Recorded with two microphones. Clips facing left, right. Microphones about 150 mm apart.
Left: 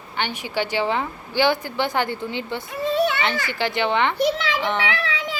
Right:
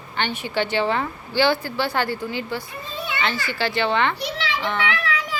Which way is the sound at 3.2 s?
15° left (ahead or behind).